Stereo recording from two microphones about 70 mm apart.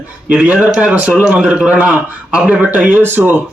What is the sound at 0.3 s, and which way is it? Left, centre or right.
A man's voice, centre.